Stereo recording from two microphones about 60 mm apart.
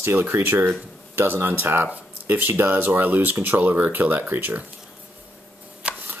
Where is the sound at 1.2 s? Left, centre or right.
Right.